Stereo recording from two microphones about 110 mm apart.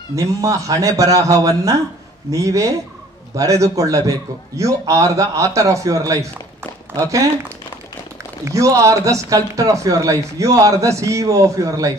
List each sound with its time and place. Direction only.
0.1 s speech: 30° right (ahead or behind)
8.5 s speech: 30° right (ahead or behind)